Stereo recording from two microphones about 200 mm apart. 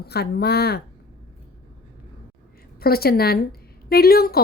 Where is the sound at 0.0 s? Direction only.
55° left (ahead or behind).